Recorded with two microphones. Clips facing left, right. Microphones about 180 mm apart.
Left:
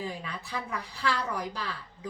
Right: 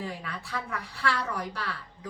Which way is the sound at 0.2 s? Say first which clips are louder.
Even; 15° left (ahead or behind).